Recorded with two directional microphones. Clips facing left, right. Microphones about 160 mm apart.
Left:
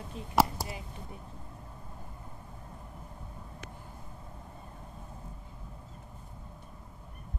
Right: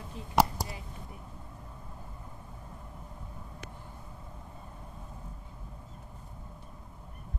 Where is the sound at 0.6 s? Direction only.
Centre (ahead or behind).